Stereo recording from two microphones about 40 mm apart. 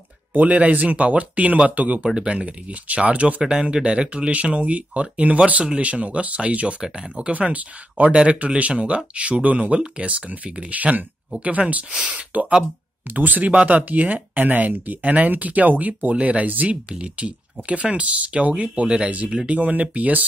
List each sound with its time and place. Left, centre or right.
0.3 s speech: right
2.0 s speech: right
3.7 s speech: right
4.3 s speech: right
16.6 s speech: right